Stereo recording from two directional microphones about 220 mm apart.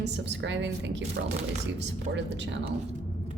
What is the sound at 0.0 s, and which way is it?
A woman's voice, 55° right (ahead or behind).